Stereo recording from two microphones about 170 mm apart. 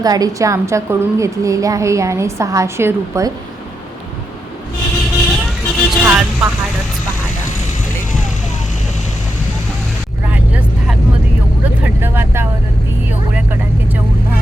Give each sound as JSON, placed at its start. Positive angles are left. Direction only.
{"t": 0.0, "sound": "a woman's voice", "side_deg": -20}
{"t": 5.2, "sound": "vehicle", "side_deg": 0}
{"t": 11.8, "sound": "vehicle", "side_deg": -10}